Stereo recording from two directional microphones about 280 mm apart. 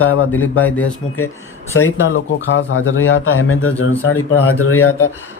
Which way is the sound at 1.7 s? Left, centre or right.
Left.